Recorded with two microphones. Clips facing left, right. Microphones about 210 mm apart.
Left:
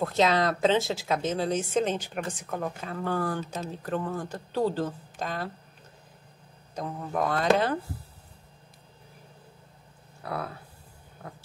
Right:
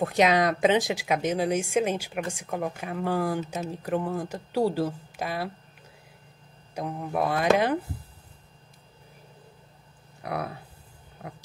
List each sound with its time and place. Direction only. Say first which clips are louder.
0.0 s speech: right 2 dB; 15° right (ahead or behind)
6.7 s speech: right 2 dB; 10° right (ahead or behind)
10.2 s speech: right 2 dB; 15° right (ahead or behind)